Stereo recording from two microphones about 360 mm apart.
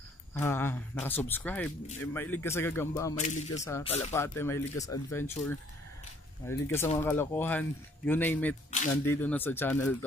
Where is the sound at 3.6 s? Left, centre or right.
Centre.